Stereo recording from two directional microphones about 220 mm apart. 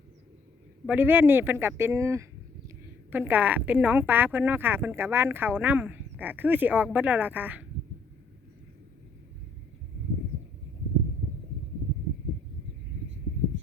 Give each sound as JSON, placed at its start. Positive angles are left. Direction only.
{"t": 0.9, "sound": "a woman's voice", "side_deg": -10}